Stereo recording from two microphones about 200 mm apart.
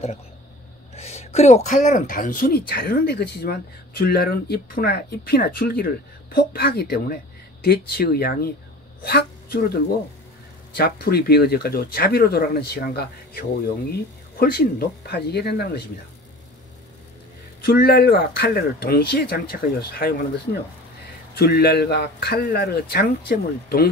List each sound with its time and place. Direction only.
0.9 s a woman's voice: 30° left (ahead or behind); by 15.8 s 50° left (ahead or behind)
17.6 s speech: 50° left (ahead or behind)
21.4 s speech: 50° left (ahead or behind)